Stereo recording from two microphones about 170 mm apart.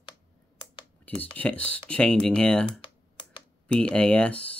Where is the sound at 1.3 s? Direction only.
10° left (ahead or behind).